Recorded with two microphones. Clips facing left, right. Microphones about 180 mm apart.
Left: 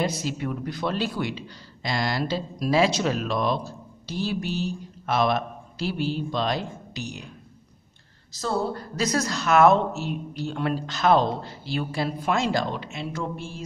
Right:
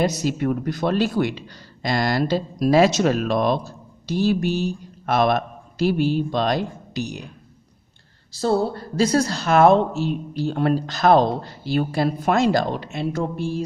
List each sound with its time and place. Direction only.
0.0 s a woman's voice: 40° right (ahead or behind)
8.3 s a woman's voice: 30° right (ahead or behind)